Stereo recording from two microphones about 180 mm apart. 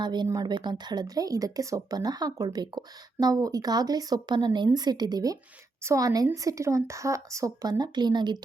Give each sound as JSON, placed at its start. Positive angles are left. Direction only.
{"t": 0.0, "sound": "speech", "side_deg": -25}